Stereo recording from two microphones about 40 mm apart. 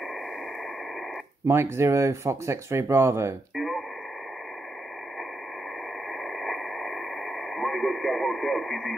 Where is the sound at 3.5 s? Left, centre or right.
Centre.